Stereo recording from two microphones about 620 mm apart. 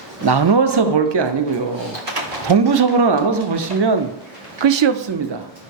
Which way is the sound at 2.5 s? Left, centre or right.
Right.